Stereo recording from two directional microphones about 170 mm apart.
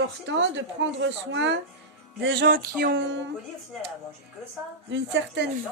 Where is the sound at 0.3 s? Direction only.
90° right.